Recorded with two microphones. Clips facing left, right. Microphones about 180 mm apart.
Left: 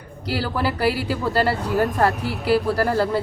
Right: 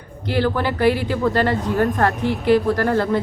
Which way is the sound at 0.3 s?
5° left (ahead or behind).